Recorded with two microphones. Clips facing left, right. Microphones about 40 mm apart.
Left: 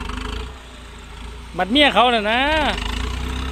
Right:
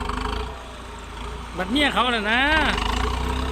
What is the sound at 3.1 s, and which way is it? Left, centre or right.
Vehicle, left.